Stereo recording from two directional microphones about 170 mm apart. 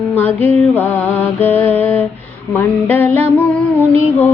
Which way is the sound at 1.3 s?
10° left (ahead or behind).